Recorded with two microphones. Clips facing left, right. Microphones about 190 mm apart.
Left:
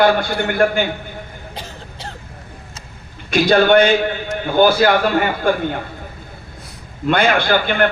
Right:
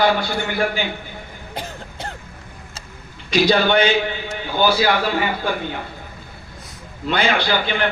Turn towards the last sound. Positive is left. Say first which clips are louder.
# left 4 dB
turn(degrees=50)  # may be behind; listen again after turning